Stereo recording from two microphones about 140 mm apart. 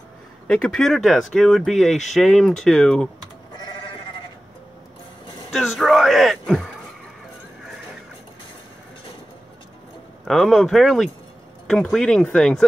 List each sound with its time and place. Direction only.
0.5 s speech: 5° left (ahead or behind)
3.5 s sheep: 30° left (ahead or behind)
5.5 s speech: centre (ahead or behind)
10.2 s speech: centre (ahead or behind)